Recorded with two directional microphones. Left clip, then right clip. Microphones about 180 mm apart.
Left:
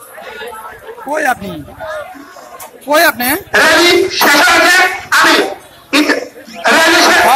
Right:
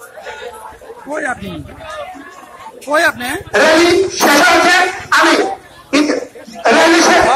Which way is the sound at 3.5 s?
50° right (ahead or behind).